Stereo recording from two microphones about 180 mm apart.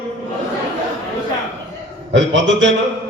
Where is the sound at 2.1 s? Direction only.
90° right.